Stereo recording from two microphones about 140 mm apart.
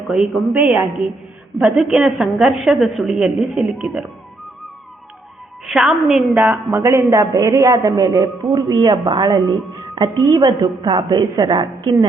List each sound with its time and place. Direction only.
0.1 s a woman's voice: centre (ahead or behind)
5.6 s a woman's voice: centre (ahead or behind)
6.7 s a woman's voice: 20° right (ahead or behind)